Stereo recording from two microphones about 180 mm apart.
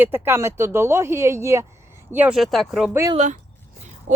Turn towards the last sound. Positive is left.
turn(degrees=-40)  # may be behind; listen again after turning